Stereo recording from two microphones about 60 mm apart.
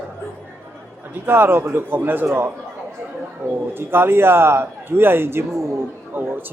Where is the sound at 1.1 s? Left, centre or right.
Right.